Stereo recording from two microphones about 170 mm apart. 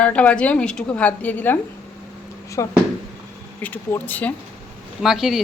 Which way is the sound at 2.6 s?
20° left (ahead or behind).